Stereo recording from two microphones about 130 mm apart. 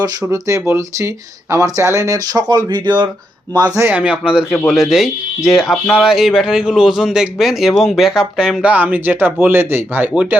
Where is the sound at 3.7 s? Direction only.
10° right (ahead or behind).